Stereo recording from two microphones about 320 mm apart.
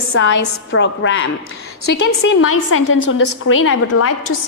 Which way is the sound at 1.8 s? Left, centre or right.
Left.